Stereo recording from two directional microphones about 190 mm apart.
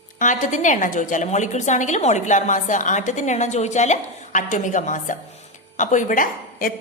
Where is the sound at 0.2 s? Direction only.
40° left (ahead or behind).